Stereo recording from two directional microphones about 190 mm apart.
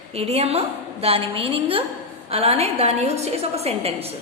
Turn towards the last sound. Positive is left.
turn(degrees=-30)  # may be behind; listen again after turning